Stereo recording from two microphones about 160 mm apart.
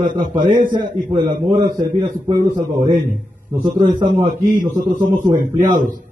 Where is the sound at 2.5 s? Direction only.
50° right (ahead or behind).